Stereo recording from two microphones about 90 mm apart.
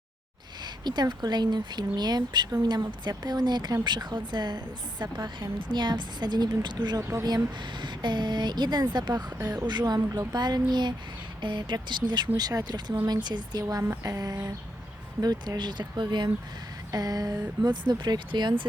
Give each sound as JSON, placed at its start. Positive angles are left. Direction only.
{"t": 0.6, "sound": "speech", "side_deg": -50}
{"t": 12.4, "sound": "speech", "side_deg": -45}
{"t": 13.8, "sound": "a sound", "side_deg": -25}
{"t": 14.1, "sound": "speech", "side_deg": -45}
{"t": 16.9, "sound": "speech", "side_deg": -45}
{"t": 17.6, "sound": "speech", "side_deg": -55}